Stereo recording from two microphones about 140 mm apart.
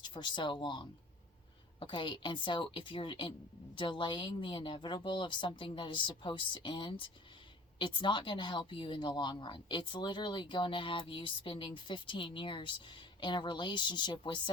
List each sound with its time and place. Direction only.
0.0 s speech: 35° left (ahead or behind)